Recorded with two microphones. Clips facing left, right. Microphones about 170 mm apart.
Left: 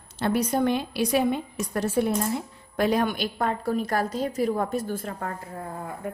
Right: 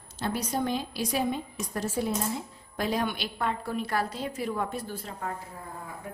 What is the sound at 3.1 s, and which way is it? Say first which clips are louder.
A woman's voice: left 4 dB; 45° left (ahead or behind).